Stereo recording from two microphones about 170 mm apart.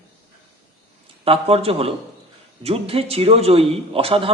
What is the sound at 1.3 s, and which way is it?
A man's voice, 35° right (ahead or behind).